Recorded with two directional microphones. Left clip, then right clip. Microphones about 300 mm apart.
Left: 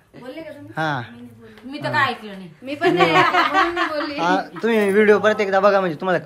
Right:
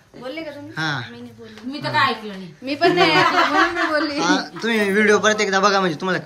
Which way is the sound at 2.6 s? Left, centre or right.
Right.